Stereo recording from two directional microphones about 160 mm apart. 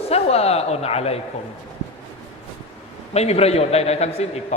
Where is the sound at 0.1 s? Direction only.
40° left (ahead or behind).